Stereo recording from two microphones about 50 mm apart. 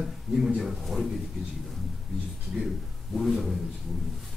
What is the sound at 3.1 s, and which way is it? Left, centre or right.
Speech, centre.